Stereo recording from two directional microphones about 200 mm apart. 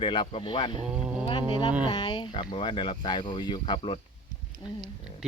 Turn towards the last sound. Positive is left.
turn(degrees=20)  # may be behind; listen again after turning